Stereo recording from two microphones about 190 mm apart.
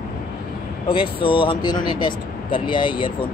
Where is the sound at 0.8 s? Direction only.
25° left (ahead or behind).